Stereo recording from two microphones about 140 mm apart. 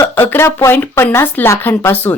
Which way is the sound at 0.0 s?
15° left (ahead or behind).